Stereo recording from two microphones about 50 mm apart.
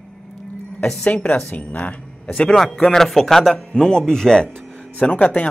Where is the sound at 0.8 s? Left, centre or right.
Centre.